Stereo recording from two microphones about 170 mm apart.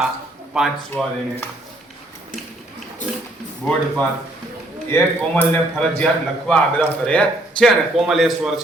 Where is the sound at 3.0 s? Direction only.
45° left (ahead or behind).